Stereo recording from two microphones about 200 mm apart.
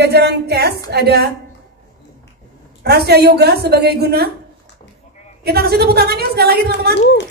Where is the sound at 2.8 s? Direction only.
55° right (ahead or behind).